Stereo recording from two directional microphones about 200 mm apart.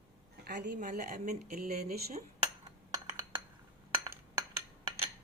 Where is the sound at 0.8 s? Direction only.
45° right (ahead or behind).